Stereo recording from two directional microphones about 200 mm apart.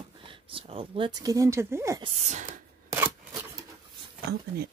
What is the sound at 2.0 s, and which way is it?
Speech, 35° right (ahead or behind).